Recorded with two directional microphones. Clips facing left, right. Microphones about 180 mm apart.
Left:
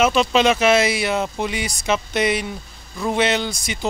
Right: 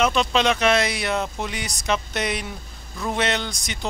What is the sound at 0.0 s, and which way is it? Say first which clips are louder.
Speech: left 4 dB; 5° left (ahead or behind).